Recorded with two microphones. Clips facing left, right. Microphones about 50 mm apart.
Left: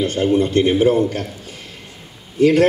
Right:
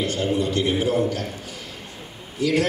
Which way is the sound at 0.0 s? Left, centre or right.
Left.